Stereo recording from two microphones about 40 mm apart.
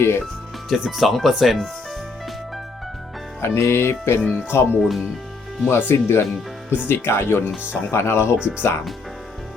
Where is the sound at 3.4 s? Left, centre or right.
Left.